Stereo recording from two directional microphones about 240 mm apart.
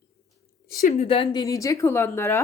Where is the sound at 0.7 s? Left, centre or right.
Left.